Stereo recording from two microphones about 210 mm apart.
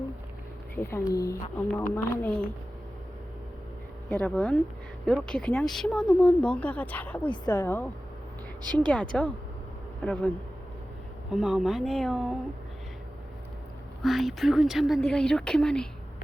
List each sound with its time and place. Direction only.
0.8 s speech: 10° left (ahead or behind)
4.1 s speech: 5° left (ahead or behind)
7.3 s speech: 20° left (ahead or behind)
8.9 s speech: 5° left (ahead or behind)
14.0 s speech: centre (ahead or behind)